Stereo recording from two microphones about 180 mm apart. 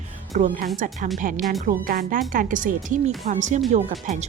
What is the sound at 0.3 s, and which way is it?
Speech, 45° right (ahead or behind).